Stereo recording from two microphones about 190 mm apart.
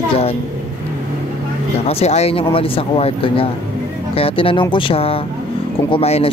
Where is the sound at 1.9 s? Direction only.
35° left (ahead or behind).